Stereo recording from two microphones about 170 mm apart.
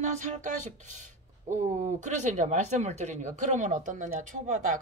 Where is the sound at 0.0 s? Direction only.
45° right (ahead or behind).